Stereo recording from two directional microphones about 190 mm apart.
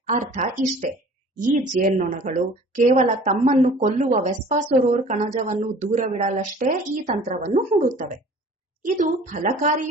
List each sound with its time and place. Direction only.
0.1 s a woman's voice: 40° right (ahead or behind)